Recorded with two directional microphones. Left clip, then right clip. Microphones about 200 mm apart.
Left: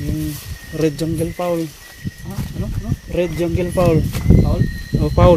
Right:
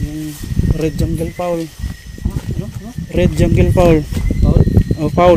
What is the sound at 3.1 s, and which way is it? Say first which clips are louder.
Speech: right 4 dB; 40° right (ahead or behind).